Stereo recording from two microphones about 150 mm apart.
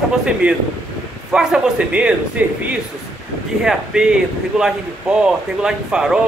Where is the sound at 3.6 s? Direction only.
5° right (ahead or behind).